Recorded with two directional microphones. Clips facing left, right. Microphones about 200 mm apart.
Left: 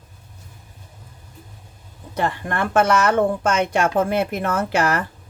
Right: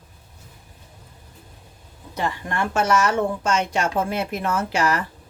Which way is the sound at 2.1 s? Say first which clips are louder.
Left 3 dB; 55° left (ahead or behind).